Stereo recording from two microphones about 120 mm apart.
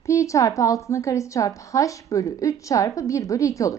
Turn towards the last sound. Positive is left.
turn(degrees=25)  # may be behind; listen again after turning